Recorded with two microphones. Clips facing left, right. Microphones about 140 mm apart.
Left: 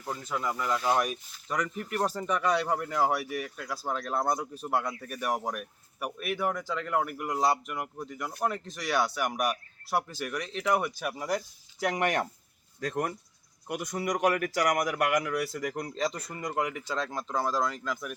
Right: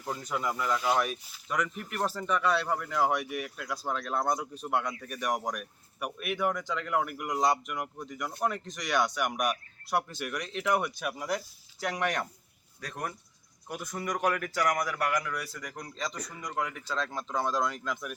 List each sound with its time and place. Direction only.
0.0 s a man's voice: centre (ahead or behind); by 1.1 s 15° left (ahead or behind)
1.3 s speech: 5° right (ahead or behind)
2.0 s a man's voice: 15° left (ahead or behind)
3.2 s speech: 5° right (ahead or behind)
12.9 s speech: 35° left (ahead or behind)
13.7 s a man's voice: 15° left (ahead or behind)
15.6 s speech: 55° left (ahead or behind)
16.0 s speech: 30° left (ahead or behind)
16.3 s speech: 50° left (ahead or behind)
16.7 s speech: 10° left (ahead or behind)